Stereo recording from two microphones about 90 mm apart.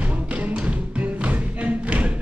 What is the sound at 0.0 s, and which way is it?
Music, 15° right (ahead or behind).